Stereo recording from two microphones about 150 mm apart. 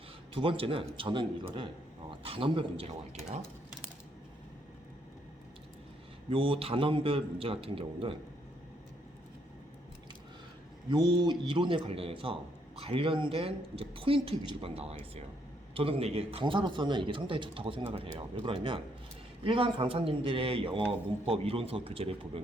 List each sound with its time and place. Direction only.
0.3 s a man's voice: 35° right (ahead or behind)
6.3 s a man's voice: 35° right (ahead or behind)
10.8 s a man's voice: 30° right (ahead or behind)